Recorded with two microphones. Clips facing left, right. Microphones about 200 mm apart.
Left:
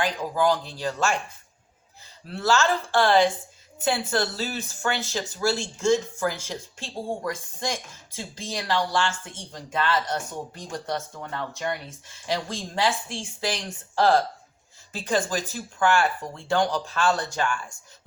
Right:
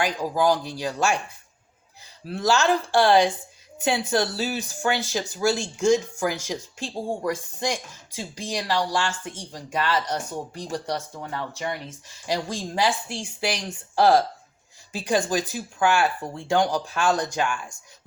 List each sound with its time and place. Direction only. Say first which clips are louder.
0.0 s speech: right 1 dB; 10° right (ahead or behind)
2.3 s speech: right 2 dB; 15° right (ahead or behind)
12.2 s speech: right 2 dB; 15° right (ahead or behind)